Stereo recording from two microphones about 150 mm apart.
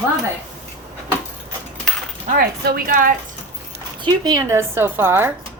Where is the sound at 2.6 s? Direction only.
75° right (ahead or behind).